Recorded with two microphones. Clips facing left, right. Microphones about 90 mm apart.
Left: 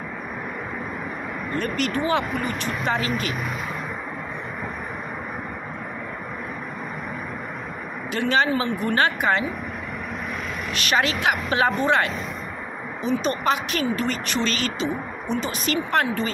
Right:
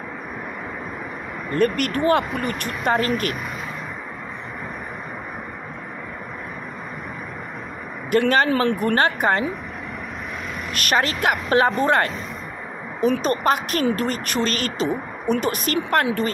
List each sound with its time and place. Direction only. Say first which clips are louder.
1.6 s speech: right 6 dB; 55° right (ahead or behind)
8.1 s speech: right 4 dB; 50° right (ahead or behind)
8.9 s speech: left 2 dB; 40° right (ahead or behind)
10.7 s speech: right 1 dB; 50° right (ahead or behind)